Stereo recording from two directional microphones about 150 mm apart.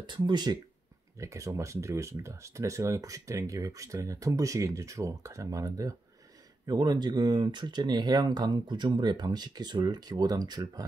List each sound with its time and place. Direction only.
0.0 s speech: 30° right (ahead or behind)